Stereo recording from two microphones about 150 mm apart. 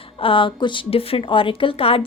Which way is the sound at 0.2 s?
35° left (ahead or behind).